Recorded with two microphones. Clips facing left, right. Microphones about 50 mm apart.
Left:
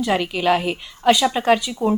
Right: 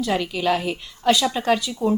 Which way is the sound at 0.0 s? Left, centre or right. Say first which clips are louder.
Left 3 dB; centre.